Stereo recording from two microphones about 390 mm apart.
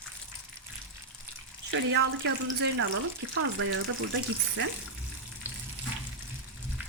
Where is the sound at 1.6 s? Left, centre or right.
Right.